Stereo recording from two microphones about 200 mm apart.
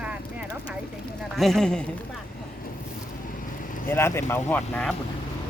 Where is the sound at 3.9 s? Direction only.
10° left (ahead or behind).